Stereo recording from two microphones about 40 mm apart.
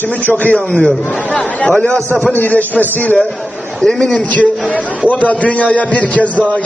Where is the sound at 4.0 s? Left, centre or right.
Left.